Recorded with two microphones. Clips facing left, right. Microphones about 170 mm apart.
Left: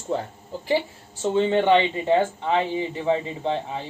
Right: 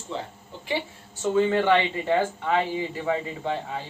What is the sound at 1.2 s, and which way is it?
Speech, 25° left (ahead or behind).